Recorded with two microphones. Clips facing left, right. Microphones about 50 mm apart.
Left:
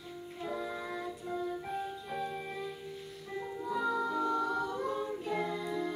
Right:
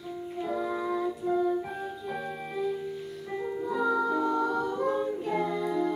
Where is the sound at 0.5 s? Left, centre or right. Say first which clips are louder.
Right 8 dB; centre.